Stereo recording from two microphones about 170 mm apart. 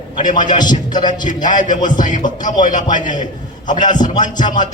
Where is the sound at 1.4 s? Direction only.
50° left (ahead or behind).